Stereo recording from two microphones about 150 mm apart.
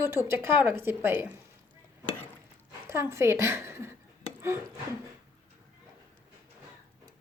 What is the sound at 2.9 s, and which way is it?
A woman's voice, 20° right (ahead or behind).